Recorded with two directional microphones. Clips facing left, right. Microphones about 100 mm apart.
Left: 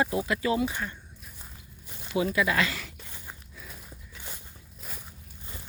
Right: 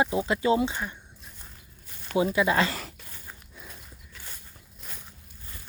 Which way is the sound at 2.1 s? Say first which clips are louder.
Right 3 dB; 25° right (ahead or behind).